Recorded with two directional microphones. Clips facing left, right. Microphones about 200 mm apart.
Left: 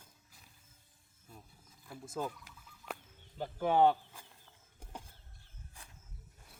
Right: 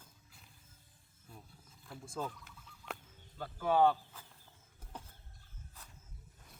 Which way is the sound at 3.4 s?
20° left (ahead or behind).